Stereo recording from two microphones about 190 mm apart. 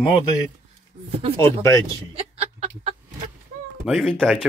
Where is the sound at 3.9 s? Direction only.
Centre (ahead or behind).